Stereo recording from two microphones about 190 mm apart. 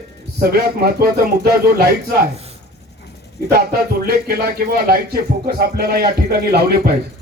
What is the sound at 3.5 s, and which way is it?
A man's voice, 55° right (ahead or behind).